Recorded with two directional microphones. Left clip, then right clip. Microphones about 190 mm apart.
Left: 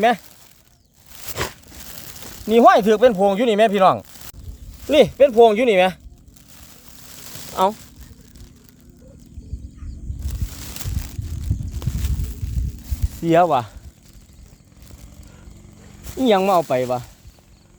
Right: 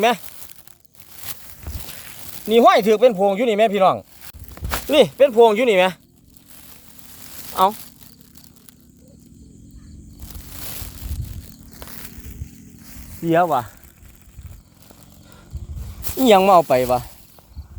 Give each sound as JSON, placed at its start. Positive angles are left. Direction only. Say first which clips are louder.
{"t": 2.5, "sound": "speech", "louder": "left 1 dB", "side_deg": -5}
{"t": 7.5, "sound": "speech", "louder": "right 2 dB", "side_deg": -5}
{"t": 13.2, "sound": "speech", "louder": "left 2 dB", "side_deg": 10}
{"t": 16.1, "sound": "speech", "louder": "right 4 dB", "side_deg": -30}